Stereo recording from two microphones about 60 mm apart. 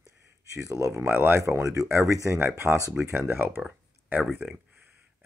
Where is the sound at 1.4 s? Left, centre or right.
Right.